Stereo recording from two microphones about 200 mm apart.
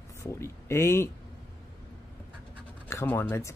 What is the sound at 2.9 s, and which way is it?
Speech, 10° left (ahead or behind).